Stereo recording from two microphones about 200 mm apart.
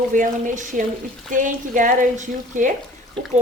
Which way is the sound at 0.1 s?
40° right (ahead or behind).